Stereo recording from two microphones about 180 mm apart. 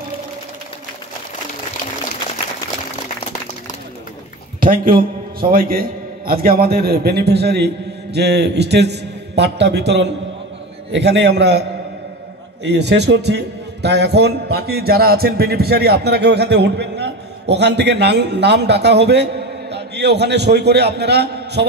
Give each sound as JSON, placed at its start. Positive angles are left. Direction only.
{"t": 4.6, "sound": "a man's voice", "side_deg": -50}
{"t": 12.6, "sound": "a man's voice", "side_deg": -70}